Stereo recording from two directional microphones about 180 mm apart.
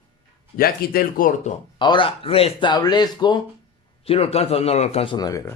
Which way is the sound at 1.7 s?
25° left (ahead or behind).